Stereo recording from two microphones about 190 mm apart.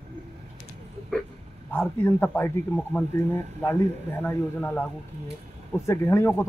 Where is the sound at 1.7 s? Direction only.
10° left (ahead or behind).